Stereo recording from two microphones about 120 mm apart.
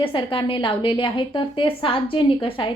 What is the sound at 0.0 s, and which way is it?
A woman's voice, 45° left (ahead or behind).